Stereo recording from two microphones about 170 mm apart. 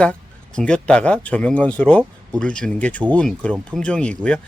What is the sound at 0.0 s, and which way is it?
Speech, 5° left (ahead or behind).